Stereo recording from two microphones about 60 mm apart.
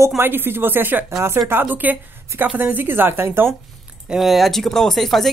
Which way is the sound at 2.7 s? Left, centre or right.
Right.